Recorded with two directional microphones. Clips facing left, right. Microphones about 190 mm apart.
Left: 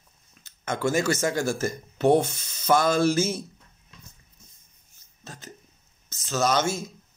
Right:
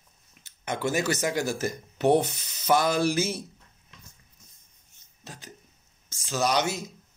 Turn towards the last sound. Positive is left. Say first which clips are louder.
# left 2 dB
turn(degrees=-15)  # may be behind; listen again after turning